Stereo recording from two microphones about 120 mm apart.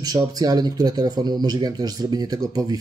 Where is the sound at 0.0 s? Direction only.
35° right (ahead or behind).